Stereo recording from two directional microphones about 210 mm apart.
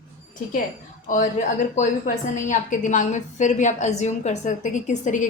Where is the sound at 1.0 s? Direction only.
40° left (ahead or behind).